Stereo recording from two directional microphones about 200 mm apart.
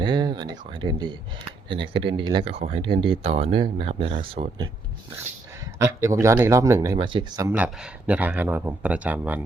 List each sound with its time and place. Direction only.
0.0 s speech: 20° right (ahead or behind)
5.8 s speech: 15° right (ahead or behind)